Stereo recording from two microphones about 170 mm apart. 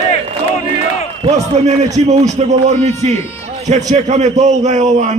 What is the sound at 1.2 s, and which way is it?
A man's voice, 40° right (ahead or behind).